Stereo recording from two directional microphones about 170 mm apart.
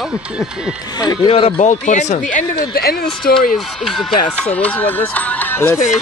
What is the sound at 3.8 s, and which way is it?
Speech, 5° left (ahead or behind).